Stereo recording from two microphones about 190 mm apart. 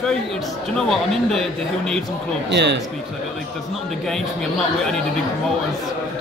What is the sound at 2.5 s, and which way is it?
Speech, 65° right (ahead or behind).